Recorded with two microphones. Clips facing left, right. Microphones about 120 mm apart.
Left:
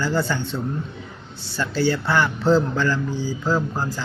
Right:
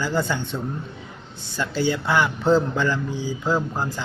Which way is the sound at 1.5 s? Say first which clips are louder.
Left 2 dB; 15° right (ahead or behind).